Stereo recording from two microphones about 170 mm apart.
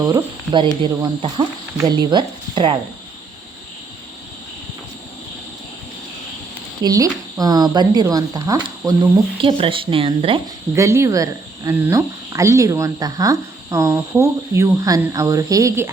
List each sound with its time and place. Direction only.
0.1 s speech: 25° right (ahead or behind)
1.8 s speech: 25° right (ahead or behind)
6.8 s speech: 20° right (ahead or behind)
10.8 s speech: 15° right (ahead or behind)